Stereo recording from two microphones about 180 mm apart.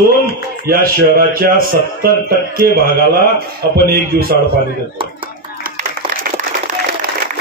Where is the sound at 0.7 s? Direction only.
55° right (ahead or behind).